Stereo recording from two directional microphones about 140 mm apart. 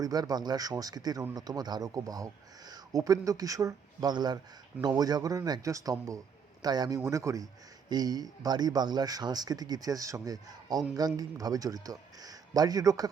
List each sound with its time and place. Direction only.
0.0 s speech: 25° right (ahead or behind)